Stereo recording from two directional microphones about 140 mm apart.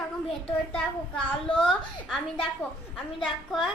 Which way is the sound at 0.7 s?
5° left (ahead or behind).